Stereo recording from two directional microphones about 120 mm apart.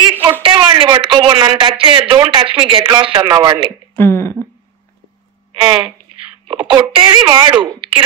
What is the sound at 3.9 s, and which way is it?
Speech, 20° left (ahead or behind).